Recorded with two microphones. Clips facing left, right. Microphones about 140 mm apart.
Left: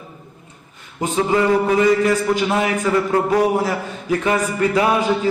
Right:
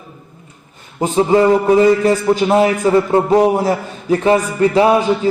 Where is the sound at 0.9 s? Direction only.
30° right (ahead or behind).